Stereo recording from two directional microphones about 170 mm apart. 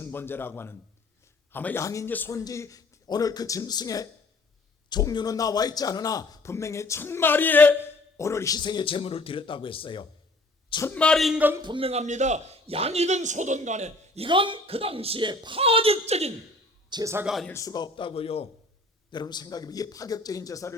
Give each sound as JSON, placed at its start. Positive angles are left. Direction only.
{"t": 0.0, "sound": "a man's voice", "side_deg": 10}
{"t": 10.8, "sound": "speech", "side_deg": 5}
{"t": 11.6, "sound": "a man's voice", "side_deg": -30}
{"t": 14.3, "sound": "a man's voice", "side_deg": -30}
{"t": 16.9, "sound": "speech", "side_deg": -20}
{"t": 17.2, "sound": "speech", "side_deg": 0}
{"t": 17.5, "sound": "a man's voice", "side_deg": 20}
{"t": 19.1, "sound": "a man's voice", "side_deg": 25}